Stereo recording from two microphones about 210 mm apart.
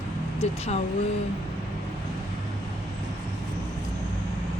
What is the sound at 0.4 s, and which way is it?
Speech, 30° left (ahead or behind).